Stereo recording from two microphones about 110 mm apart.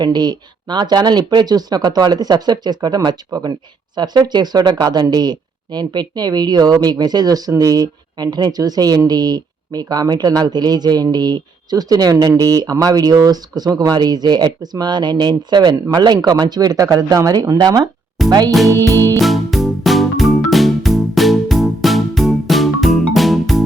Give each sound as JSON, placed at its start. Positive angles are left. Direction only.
{"t": 0.0, "sound": "speech", "side_deg": -40}
{"t": 18.7, "sound": "music", "side_deg": -30}
{"t": 19.2, "sound": "music", "side_deg": 0}